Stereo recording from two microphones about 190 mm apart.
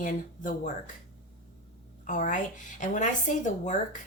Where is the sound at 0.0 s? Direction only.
45° left (ahead or behind).